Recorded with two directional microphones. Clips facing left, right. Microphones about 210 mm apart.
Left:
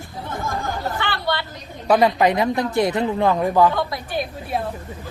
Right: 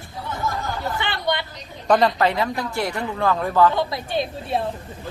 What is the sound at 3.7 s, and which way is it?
Speech, 25° right (ahead or behind).